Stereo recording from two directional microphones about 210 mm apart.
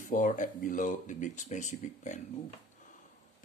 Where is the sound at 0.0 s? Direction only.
40° left (ahead or behind).